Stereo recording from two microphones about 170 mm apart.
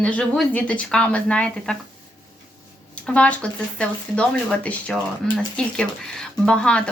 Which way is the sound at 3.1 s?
5° left (ahead or behind).